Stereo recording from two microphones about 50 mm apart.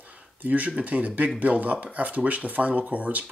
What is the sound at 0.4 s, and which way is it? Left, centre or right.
Speech, right.